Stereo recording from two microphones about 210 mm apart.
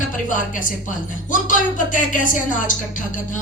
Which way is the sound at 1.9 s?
40° left (ahead or behind).